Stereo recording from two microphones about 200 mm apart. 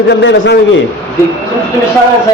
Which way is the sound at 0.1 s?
60° left (ahead or behind).